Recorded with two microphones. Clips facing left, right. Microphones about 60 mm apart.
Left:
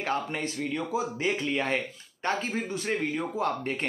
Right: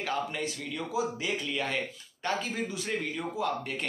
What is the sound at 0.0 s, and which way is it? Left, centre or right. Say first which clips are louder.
A man's voice: left 2 dB; left.